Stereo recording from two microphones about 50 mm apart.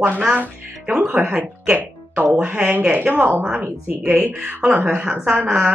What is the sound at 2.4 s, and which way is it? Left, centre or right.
Speech, right.